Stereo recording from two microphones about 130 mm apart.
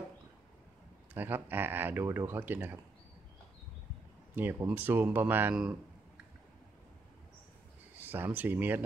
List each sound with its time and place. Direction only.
1.1 s speech: 15° right (ahead or behind)
4.4 s speech: 15° right (ahead or behind)
8.0 s speech: 15° right (ahead or behind)